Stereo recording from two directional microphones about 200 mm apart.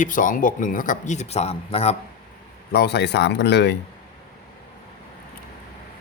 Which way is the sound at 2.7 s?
55° left (ahead or behind).